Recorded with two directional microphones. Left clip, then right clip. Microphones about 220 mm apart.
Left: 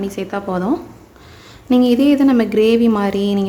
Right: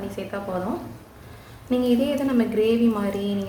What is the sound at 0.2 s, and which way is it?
Speech, 50° left (ahead or behind).